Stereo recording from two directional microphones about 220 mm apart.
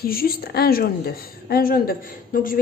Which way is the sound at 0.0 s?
40° left (ahead or behind).